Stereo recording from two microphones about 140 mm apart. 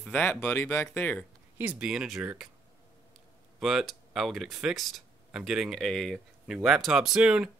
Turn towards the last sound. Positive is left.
turn(degrees=-5)  # may be behind; listen again after turning